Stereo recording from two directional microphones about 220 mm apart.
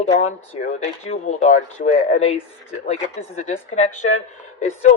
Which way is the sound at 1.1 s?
35° left (ahead or behind).